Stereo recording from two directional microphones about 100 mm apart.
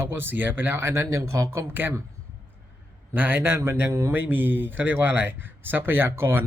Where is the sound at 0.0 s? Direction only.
25° right (ahead or behind).